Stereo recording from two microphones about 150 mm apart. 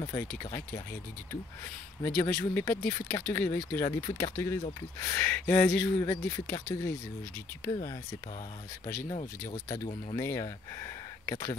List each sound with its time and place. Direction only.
0.0 s speech: 20° left (ahead or behind)
2.0 s speech: 15° left (ahead or behind)
10.1 s speech: 20° left (ahead or behind)